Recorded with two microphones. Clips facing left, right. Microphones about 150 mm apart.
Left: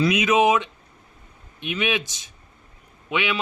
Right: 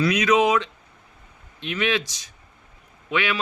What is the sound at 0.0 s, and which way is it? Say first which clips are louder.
Speech: even; 20° left (ahead or behind).